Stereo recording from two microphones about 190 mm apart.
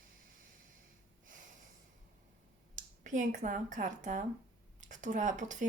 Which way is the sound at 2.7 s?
40° right (ahead or behind).